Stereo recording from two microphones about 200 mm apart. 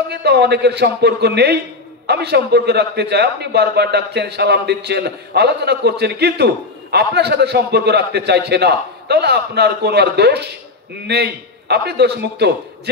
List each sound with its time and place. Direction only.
0.1 s a man's voice: 55° right (ahead or behind)